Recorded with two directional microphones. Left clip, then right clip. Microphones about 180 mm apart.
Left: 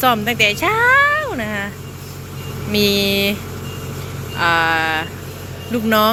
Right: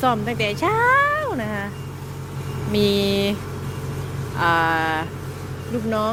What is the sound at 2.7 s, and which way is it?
Speech, 15° right (ahead or behind).